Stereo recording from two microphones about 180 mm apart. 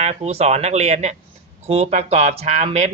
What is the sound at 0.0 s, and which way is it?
Speech, 35° right (ahead or behind).